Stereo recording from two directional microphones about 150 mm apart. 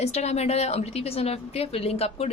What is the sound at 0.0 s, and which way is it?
A woman's voice, 45° left (ahead or behind).